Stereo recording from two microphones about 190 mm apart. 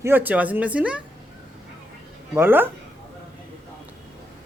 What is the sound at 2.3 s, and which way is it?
Speech, 10° right (ahead or behind).